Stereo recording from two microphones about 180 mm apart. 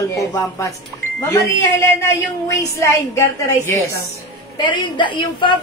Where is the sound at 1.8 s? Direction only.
15° left (ahead or behind).